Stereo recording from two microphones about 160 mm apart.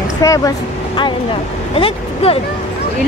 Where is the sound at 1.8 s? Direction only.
35° left (ahead or behind).